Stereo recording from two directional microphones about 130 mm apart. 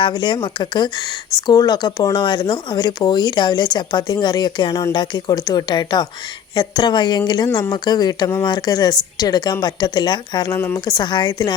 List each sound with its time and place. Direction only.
0.0 s speech: 35° left (ahead or behind)